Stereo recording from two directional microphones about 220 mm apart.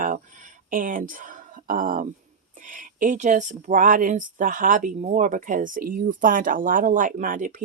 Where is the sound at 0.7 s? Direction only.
40° right (ahead or behind).